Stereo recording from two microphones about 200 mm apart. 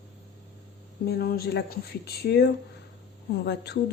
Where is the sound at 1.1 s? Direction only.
50° left (ahead or behind).